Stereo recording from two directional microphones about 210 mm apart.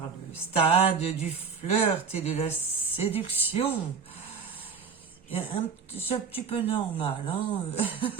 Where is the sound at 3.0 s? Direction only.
30° left (ahead or behind).